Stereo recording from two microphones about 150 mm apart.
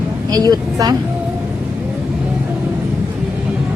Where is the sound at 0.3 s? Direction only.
25° right (ahead or behind).